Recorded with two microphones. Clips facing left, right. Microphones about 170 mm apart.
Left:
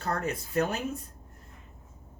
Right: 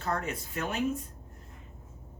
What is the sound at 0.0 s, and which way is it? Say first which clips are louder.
Speech: left 2 dB; 40° left (ahead or behind).